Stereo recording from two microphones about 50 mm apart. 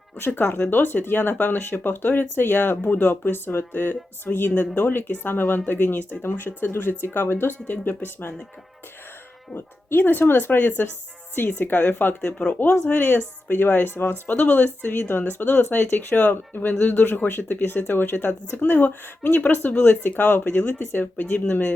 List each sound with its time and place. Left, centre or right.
0.3 s speech: left
9.6 s speech: left
12.2 s speech: left
12.9 s speech: left